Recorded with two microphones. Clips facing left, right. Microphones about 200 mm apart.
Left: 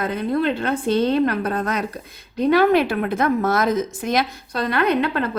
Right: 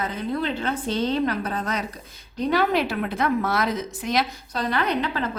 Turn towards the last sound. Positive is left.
turn(degrees=55)  # may be behind; listen again after turning